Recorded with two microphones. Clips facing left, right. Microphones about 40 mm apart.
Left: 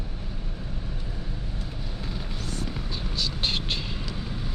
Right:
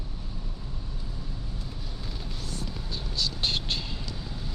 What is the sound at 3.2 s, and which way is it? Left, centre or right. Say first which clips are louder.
Vehicle: left 1 dB; left.